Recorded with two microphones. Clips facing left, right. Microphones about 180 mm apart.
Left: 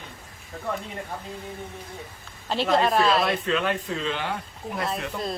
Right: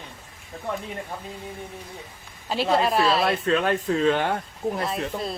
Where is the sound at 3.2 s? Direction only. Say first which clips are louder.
Right 3 dB; 40° right (ahead or behind).